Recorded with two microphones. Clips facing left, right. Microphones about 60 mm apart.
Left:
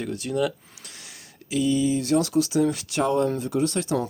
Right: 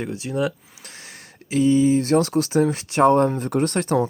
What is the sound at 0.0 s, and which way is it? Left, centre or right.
Speech, centre.